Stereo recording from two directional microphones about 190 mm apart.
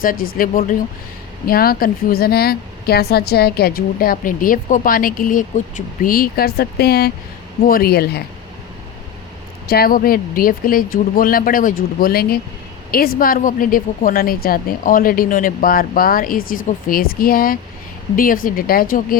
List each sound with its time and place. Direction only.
0.0 s a woman's voice: 45° left (ahead or behind)
9.6 s a woman's voice: 55° left (ahead or behind)